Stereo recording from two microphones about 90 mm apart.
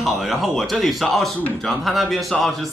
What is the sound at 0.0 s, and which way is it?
Speech, centre (ahead or behind).